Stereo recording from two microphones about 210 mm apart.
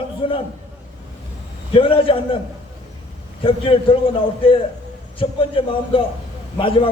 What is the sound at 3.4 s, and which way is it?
A man's voice, 25° left (ahead or behind).